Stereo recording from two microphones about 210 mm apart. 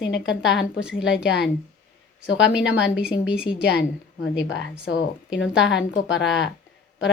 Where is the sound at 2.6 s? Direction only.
55° left (ahead or behind).